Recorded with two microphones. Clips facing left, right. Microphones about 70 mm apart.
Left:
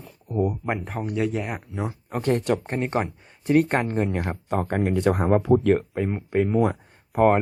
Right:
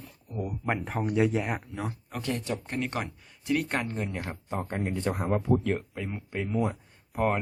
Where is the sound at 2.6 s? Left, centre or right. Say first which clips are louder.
Left 7 dB; left.